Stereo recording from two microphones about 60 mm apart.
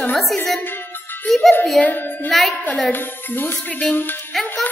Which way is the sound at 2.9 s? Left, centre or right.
Left.